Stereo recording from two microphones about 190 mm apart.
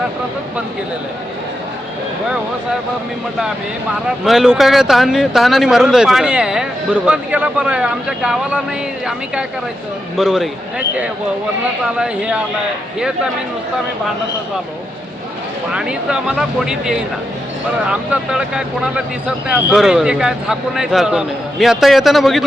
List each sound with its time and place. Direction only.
4.2 s speech: centre (ahead or behind)
10.2 s speech: centre (ahead or behind)
15.7 s speech: 5° right (ahead or behind)